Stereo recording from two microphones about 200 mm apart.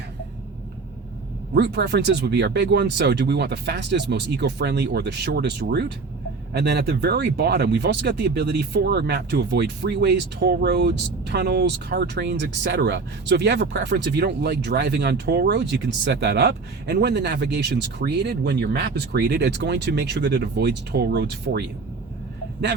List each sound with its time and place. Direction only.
1.5 s speech: 60° right (ahead or behind)